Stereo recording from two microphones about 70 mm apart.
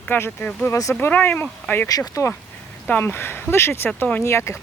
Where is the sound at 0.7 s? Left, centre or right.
Left.